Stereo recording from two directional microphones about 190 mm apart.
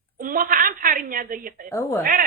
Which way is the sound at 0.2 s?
45° right (ahead or behind).